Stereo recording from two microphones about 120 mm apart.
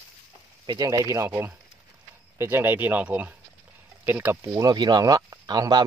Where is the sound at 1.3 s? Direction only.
15° right (ahead or behind).